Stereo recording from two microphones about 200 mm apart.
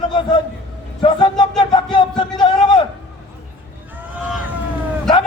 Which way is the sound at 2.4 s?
25° left (ahead or behind).